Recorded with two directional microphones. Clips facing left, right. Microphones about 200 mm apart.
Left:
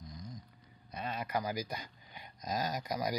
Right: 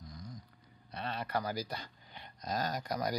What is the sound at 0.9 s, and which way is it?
Speech, 10° left (ahead or behind).